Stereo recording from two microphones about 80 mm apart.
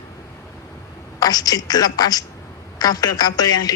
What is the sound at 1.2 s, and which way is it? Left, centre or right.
A woman's voice, left.